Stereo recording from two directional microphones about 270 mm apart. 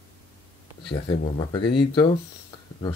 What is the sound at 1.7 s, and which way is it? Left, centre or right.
Speech, centre.